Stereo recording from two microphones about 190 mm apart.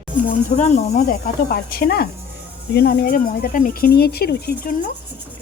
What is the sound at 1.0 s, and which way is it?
Speech, 50° left (ahead or behind).